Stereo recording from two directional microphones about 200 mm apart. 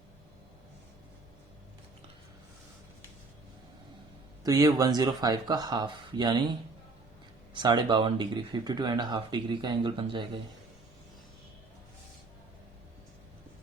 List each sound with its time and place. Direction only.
4.4 s speech: 20° right (ahead or behind)